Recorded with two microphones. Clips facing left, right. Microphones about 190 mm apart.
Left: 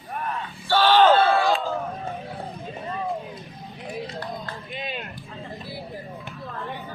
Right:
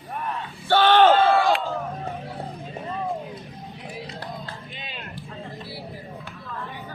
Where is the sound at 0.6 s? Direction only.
60° right (ahead or behind).